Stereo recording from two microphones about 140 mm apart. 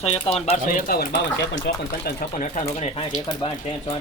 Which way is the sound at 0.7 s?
85° left.